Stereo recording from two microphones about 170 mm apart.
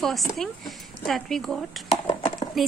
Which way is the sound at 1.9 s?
30° left (ahead or behind).